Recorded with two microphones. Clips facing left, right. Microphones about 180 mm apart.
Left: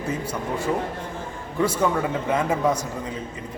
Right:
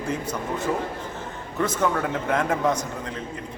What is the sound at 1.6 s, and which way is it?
A man's voice, 10° left (ahead or behind).